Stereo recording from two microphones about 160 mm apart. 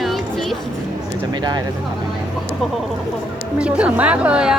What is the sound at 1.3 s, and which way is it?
Speech, 25° right (ahead or behind).